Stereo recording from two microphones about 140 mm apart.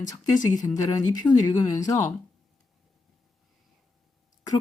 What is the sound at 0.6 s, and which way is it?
Speech, 25° left (ahead or behind).